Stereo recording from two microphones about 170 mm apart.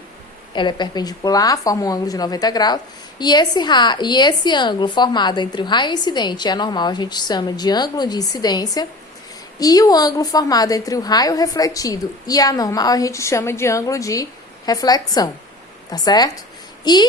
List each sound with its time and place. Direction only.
0.5 s speech: 25° left (ahead or behind)